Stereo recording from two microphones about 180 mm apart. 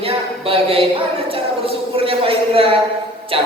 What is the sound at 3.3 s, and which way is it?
Music, 30° right (ahead or behind).